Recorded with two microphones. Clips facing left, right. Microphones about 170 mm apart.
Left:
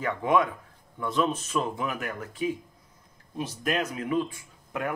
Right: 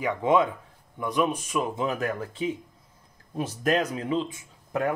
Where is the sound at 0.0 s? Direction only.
20° right (ahead or behind).